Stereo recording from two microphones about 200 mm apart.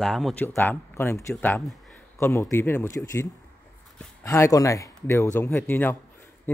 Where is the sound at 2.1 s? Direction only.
15° left (ahead or behind).